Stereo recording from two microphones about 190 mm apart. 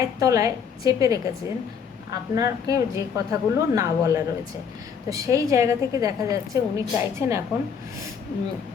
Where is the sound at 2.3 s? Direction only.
15° right (ahead or behind).